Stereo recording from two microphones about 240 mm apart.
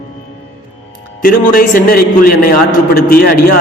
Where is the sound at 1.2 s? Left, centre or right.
Left.